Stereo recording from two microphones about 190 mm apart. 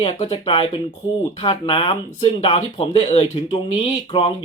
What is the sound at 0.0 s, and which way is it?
Speech, 30° left (ahead or behind).